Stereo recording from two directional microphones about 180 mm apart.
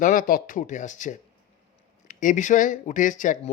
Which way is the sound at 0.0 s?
50° left (ahead or behind).